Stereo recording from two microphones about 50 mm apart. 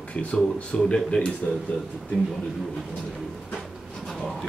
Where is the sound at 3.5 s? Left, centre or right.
Centre.